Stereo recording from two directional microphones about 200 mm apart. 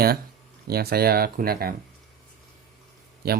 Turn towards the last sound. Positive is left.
turn(degrees=-50)  # may be behind; listen again after turning